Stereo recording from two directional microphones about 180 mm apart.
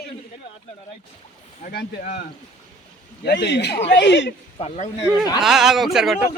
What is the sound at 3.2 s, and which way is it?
Speech, 70° left (ahead or behind).